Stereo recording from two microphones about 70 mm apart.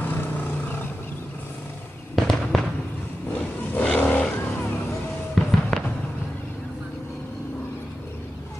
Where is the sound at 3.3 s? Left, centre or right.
Centre.